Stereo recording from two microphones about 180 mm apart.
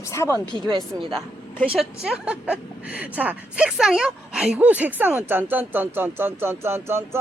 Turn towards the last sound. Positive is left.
turn(degrees=-15)  # may be behind; listen again after turning